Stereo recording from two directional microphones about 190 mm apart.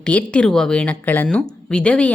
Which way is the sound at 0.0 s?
5° left (ahead or behind).